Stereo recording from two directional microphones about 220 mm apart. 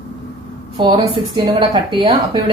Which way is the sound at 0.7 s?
20° right (ahead or behind).